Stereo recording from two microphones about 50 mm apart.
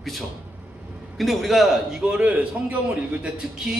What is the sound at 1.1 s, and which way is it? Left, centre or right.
Speech, centre.